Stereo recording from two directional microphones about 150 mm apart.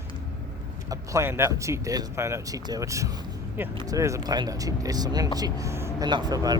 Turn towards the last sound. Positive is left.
turn(degrees=-25)  # may be behind; listen again after turning